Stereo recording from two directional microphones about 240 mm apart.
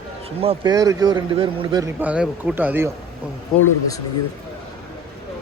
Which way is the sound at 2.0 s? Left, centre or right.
Centre.